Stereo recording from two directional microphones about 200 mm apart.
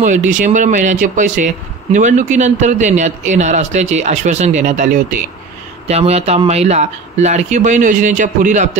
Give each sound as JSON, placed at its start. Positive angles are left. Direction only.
{"t": 0.0, "sound": "speech", "side_deg": -40}
{"t": 5.9, "sound": "speech", "side_deg": -30}